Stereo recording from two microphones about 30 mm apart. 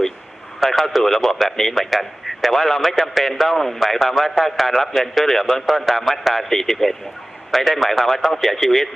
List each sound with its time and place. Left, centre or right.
0.6 s a man's voice: centre